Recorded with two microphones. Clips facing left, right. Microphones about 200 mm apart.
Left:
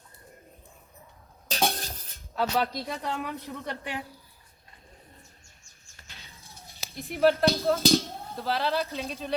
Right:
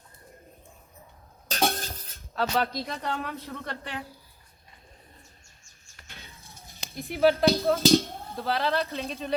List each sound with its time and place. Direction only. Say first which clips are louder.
1.5 s cutlery: right 1 dB; centre (ahead or behind)
3.3 s a man's voice: left 1 dB; 15° left (ahead or behind)
6.1 s a sound: right 4 dB; 15° right (ahead or behind)
6.4 s speech: right 1 dB; centre (ahead or behind)